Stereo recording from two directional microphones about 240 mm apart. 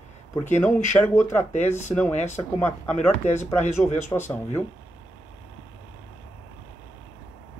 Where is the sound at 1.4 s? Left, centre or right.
Left.